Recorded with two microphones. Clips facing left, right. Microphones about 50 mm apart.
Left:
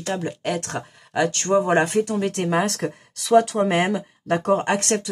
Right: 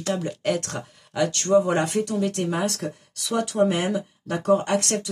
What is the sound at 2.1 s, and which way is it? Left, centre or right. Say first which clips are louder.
Speech: left 3 dB; left.